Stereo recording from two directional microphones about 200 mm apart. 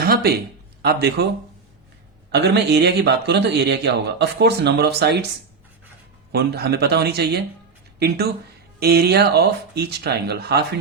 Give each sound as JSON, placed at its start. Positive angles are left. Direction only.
{"t": 0.0, "sound": "a sound", "side_deg": -50}
{"t": 2.3, "sound": "a man's voice", "side_deg": -55}
{"t": 6.3, "sound": "speech", "side_deg": -55}